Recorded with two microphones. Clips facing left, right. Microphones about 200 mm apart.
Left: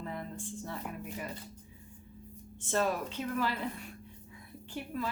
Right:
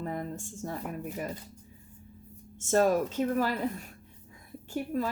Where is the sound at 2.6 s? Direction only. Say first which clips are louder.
Right 7 dB; 45° right (ahead or behind).